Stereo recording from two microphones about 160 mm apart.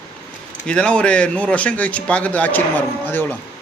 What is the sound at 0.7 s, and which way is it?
Speech, 5° left (ahead or behind).